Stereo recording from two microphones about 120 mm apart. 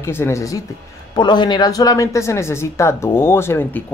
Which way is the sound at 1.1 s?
40° left (ahead or behind).